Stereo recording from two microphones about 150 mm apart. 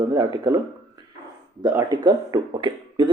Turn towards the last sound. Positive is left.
turn(degrees=-30)  # may be behind; listen again after turning